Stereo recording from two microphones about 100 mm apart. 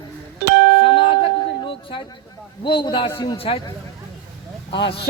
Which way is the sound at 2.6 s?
55° left (ahead or behind).